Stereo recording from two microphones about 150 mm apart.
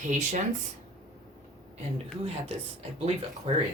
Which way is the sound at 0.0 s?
55° right (ahead or behind).